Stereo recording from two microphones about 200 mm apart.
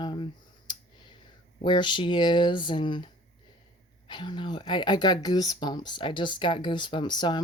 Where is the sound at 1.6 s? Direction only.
25° left (ahead or behind).